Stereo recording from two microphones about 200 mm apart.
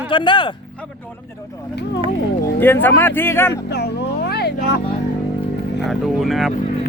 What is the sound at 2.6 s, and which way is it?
Speech, 10° left (ahead or behind).